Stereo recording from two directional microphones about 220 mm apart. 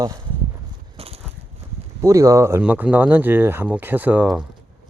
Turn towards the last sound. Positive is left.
turn(degrees=-5)  # may be behind; listen again after turning